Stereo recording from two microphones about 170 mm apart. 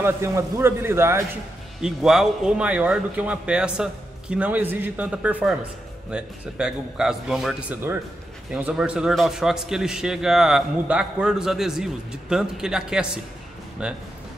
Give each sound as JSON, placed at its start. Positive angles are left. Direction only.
{"t": 0.0, "sound": "a man's voice", "side_deg": -15}
{"t": 1.8, "sound": "a man's voice", "side_deg": 0}